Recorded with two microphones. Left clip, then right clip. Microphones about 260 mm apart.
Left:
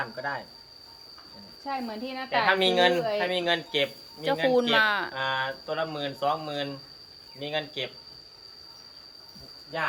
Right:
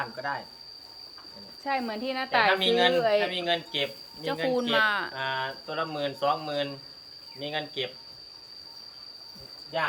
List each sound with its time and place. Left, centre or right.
0.0 s speech: centre
1.6 s speech: centre
2.6 s a woman's voice: centre